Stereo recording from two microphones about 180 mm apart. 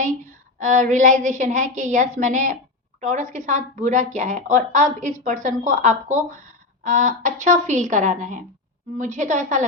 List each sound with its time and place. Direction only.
0.6 s speech: 45° right (ahead or behind)